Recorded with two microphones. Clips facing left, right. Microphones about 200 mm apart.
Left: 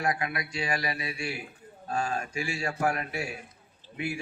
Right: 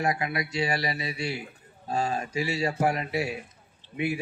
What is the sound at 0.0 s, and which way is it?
A man's voice, 25° right (ahead or behind).